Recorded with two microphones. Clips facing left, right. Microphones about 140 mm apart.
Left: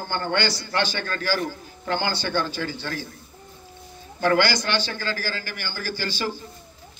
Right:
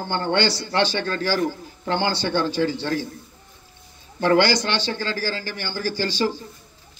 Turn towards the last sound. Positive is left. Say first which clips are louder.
# right 5 dB
turn(degrees=-30)  # may be behind; listen again after turning